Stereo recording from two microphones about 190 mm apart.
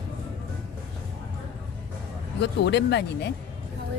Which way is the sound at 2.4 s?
65° left (ahead or behind).